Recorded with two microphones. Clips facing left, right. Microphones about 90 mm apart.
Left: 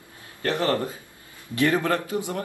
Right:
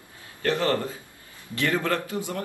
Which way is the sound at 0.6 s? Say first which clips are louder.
Left 1 dB; 25° left (ahead or behind).